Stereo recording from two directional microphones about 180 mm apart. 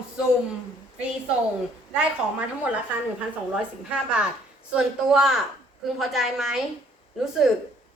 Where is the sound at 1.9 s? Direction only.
5° right (ahead or behind).